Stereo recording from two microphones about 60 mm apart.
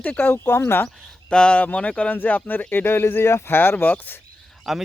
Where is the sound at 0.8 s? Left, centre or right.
Centre.